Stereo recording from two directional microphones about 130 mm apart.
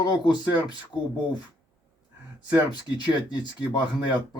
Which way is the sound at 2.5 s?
35° left (ahead or behind).